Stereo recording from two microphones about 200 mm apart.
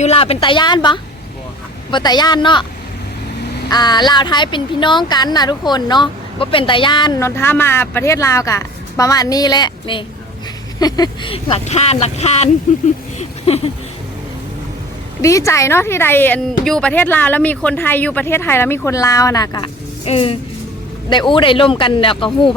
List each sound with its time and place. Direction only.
0.0 s a woman's voice: 30° left (ahead or behind)
3.7 s a woman's voice: 20° left (ahead or behind); by 12.8 s 40° left (ahead or behind)
13.1 s a sound: 30° left (ahead or behind)
15.2 s speech: 15° left (ahead or behind)
20.1 s a woman's voice: 30° left (ahead or behind)